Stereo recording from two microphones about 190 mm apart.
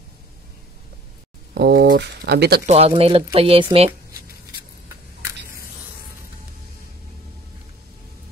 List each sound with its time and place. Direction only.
1.5 s speech: 60° right (ahead or behind)
2.6 s speech: 35° right (ahead or behind)